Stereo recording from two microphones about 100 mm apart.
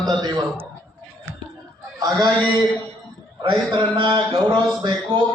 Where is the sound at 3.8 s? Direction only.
50° right (ahead or behind).